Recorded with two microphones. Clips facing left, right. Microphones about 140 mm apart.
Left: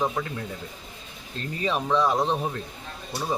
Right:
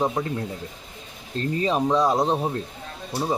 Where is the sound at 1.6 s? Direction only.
35° right (ahead or behind).